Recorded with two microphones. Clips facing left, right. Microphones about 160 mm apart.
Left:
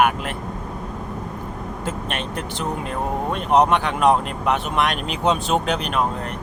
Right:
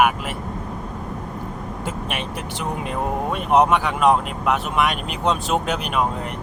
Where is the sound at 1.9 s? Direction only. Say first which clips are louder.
Left 1 dB; 10° right (ahead or behind).